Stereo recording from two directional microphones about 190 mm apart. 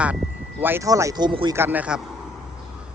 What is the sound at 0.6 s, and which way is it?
Speech, 15° right (ahead or behind).